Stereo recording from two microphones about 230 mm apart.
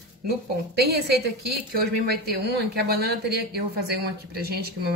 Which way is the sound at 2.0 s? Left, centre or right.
Right.